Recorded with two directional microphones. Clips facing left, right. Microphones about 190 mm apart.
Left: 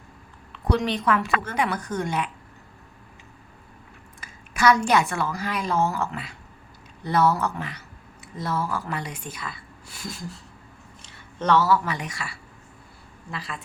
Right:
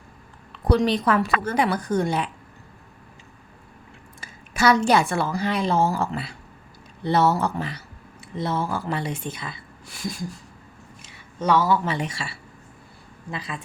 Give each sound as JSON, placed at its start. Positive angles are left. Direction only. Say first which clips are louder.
{"t": 0.7, "sound": "a woman's voice", "louder": "right 3 dB", "side_deg": -35}
{"t": 4.2, "sound": "a sound", "louder": "right 1 dB", "side_deg": -30}
{"t": 4.9, "sound": "a woman's voice", "louder": "right 2 dB", "side_deg": -30}
{"t": 11.3, "sound": "speech", "louder": "even", "side_deg": -10}
{"t": 11.9, "sound": "speech", "louder": "right 4 dB", "side_deg": -30}